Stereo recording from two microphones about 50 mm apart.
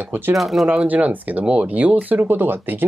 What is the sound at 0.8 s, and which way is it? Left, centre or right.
Speech, right.